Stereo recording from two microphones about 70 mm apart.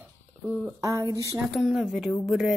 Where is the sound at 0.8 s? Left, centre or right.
Right.